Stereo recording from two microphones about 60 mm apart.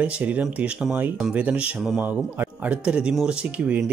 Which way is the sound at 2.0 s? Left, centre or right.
Right.